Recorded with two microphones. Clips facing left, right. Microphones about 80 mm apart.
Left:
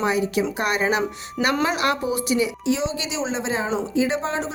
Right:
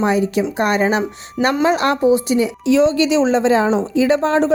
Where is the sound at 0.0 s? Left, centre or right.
Right.